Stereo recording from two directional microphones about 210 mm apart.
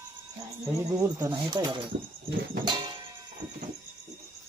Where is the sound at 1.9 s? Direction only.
25° right (ahead or behind).